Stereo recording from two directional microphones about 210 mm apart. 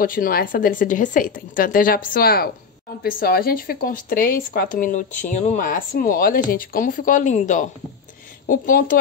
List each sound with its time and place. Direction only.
0.0 s speech: 40° left (ahead or behind)